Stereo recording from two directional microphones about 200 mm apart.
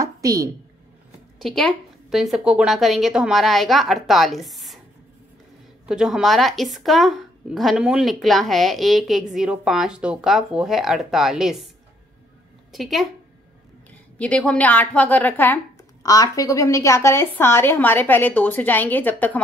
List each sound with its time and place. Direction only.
0.0 s a sound: 15° right (ahead or behind)
1.4 s speech: centre (ahead or behind)
5.9 s speech: 5° right (ahead or behind)
12.7 s speech: centre (ahead or behind)
14.1 s a woman's voice: 5° left (ahead or behind)